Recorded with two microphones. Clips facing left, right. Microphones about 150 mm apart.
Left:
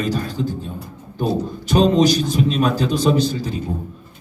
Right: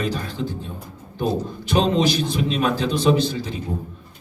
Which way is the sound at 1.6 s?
40° left (ahead or behind).